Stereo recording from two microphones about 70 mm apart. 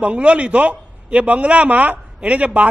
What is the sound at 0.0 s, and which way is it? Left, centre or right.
A man's voice, centre.